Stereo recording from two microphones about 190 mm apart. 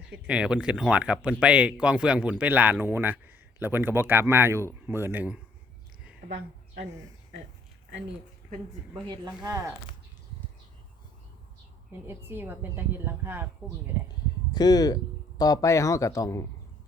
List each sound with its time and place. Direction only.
0.3 s a man's voice: 5° right (ahead or behind)
6.2 s a woman's voice: 40° right (ahead or behind)
9.0 s speech: 20° right (ahead or behind)
12.0 s a man's voice: 10° right (ahead or behind)
14.5 s a man's voice: 20° left (ahead or behind)